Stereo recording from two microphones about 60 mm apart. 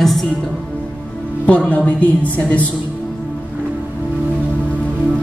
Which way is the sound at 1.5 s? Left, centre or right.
Left.